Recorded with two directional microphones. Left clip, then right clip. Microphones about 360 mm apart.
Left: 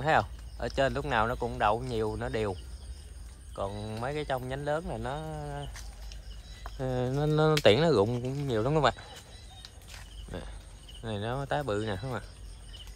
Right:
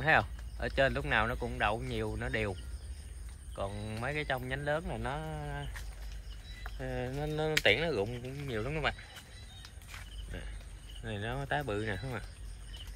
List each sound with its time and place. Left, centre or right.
0.0 s speech: centre
3.5 s speech: centre
7.1 s speech: left
7.4 s speech: centre
8.0 s speech: left
8.5 s speech: centre
11.1 s speech: centre